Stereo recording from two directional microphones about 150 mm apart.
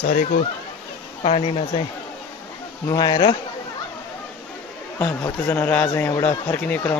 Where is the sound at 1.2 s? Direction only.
45° left (ahead or behind).